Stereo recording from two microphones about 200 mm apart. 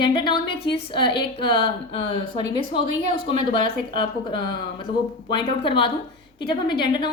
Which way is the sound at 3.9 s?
25° left (ahead or behind).